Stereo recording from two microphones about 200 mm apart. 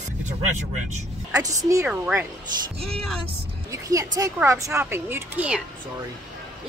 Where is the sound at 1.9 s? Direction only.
5° right (ahead or behind).